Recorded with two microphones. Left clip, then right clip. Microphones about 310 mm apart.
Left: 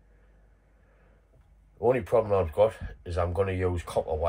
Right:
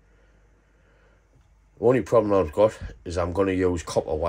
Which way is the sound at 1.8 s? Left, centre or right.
Right.